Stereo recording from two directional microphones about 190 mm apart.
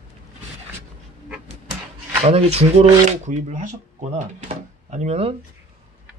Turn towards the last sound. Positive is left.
turn(degrees=-35)  # may be behind; listen again after turning